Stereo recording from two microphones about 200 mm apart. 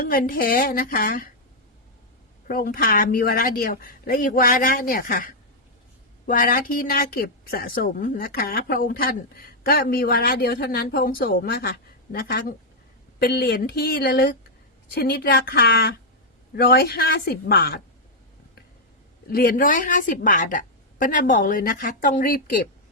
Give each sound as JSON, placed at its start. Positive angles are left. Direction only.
{"t": 0.0, "sound": "a woman's voice", "side_deg": 45}
{"t": 2.5, "sound": "a woman's voice", "side_deg": 45}
{"t": 19.3, "sound": "a woman's voice", "side_deg": 45}